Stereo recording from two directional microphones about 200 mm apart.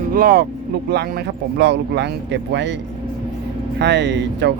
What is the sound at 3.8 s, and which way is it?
Speech, 60° right (ahead or behind).